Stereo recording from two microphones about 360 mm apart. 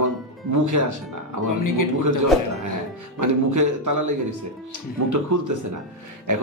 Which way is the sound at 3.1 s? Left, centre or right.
Right.